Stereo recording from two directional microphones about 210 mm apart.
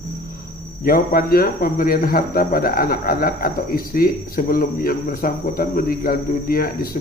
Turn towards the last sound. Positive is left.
turn(degrees=45)  # may be behind; listen again after turning